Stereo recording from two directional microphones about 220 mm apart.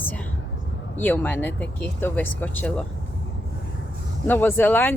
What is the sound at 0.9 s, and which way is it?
Speech, 10° left (ahead or behind).